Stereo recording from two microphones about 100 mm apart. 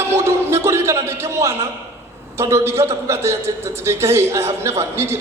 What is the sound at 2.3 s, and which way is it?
A man's voice, 30° right (ahead or behind).